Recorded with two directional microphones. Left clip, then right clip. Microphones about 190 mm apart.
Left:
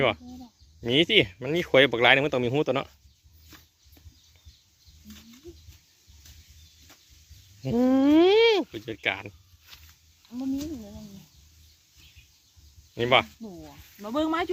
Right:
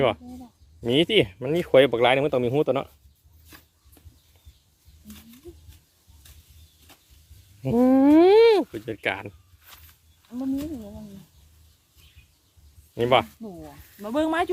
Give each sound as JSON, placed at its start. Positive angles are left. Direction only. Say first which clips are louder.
{"t": 0.8, "sound": "speech", "louder": "right 1 dB", "side_deg": -10}
{"t": 7.6, "sound": "a sound", "louder": "right 4 dB", "side_deg": -10}
{"t": 8.6, "sound": "speech", "louder": "right 1 dB", "side_deg": -10}
{"t": 12.9, "sound": "speech", "louder": "right 2 dB", "side_deg": -10}